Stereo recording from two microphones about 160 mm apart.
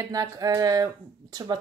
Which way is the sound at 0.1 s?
20° right (ahead or behind).